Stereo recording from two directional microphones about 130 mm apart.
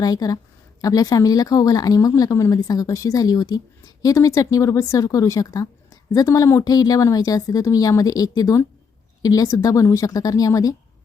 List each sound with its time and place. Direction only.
0.0 s a woman's voice: 30° left (ahead or behind)